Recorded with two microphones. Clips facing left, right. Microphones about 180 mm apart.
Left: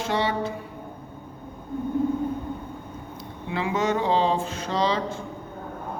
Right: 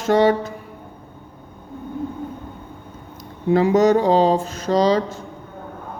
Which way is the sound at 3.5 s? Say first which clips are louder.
Right 10 dB; 40° right (ahead or behind).